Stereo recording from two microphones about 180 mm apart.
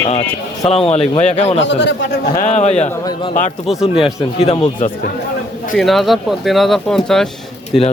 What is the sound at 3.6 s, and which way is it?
Speech, centre (ahead or behind).